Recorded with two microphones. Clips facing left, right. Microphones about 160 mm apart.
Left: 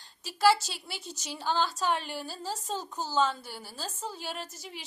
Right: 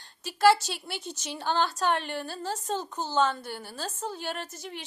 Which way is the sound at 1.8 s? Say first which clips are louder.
Right 3 dB; 60° right (ahead or behind).